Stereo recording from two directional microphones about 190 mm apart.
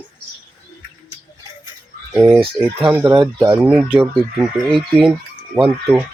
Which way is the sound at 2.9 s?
10° right (ahead or behind).